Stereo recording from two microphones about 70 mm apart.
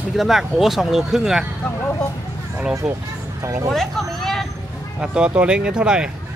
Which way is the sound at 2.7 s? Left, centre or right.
Right.